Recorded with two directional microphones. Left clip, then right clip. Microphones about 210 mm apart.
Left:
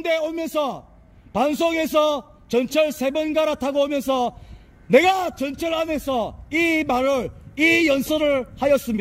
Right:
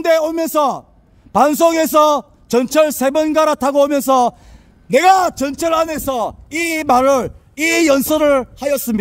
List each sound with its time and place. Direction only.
0.0 s a man's voice: 35° right (ahead or behind)